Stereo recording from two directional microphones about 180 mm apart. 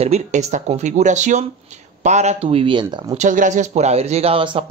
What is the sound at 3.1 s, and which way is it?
Speech, 45° right (ahead or behind).